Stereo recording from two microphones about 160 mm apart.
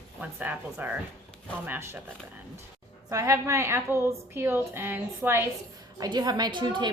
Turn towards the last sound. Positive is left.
turn(degrees=-30)  # may be behind; listen again after turning